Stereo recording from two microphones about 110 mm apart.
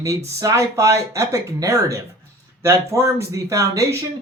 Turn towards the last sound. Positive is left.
turn(degrees=-30)  # may be behind; listen again after turning